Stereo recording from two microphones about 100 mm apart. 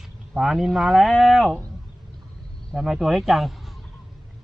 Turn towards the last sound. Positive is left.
turn(degrees=0)  # may be behind; listen again after turning